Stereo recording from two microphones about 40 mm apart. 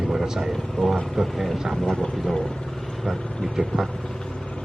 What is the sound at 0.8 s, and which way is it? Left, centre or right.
Speech, centre.